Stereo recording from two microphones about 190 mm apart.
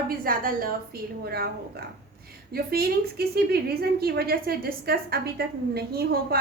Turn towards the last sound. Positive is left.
turn(degrees=-55)  # may be behind; listen again after turning